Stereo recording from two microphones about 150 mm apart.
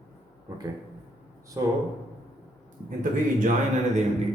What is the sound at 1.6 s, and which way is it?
Speech, 25° right (ahead or behind).